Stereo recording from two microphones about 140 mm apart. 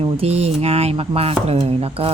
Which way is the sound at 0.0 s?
45° right (ahead or behind).